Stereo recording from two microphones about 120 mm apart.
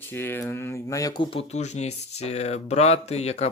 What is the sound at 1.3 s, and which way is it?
Speech, 60° left (ahead or behind).